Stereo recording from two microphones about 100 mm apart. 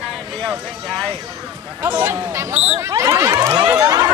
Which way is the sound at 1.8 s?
25° right (ahead or behind).